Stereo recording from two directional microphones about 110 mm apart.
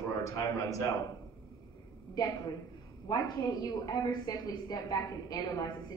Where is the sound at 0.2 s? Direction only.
30° left (ahead or behind).